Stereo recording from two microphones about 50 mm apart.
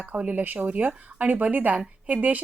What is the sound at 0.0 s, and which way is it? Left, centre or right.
A woman's voice, right.